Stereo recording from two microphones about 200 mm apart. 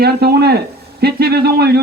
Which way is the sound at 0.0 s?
50° right (ahead or behind).